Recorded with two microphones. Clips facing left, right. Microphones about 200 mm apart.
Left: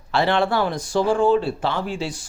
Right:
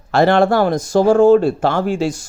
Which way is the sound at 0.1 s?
45° right (ahead or behind).